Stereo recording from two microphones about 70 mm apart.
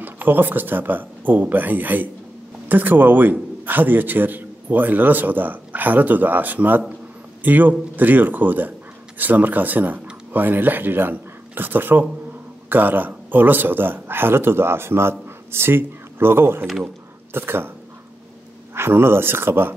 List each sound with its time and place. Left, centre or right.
0.0 s a man's voice: right
18.8 s a man's voice: right